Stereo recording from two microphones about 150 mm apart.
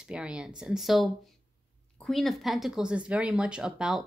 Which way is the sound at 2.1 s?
Centre (ahead or behind).